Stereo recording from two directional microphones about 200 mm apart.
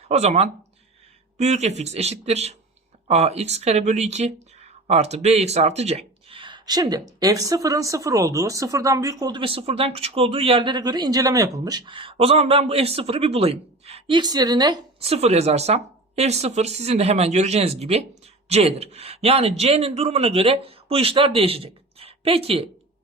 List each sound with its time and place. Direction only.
0.1 s a man's voice: 30° right (ahead or behind)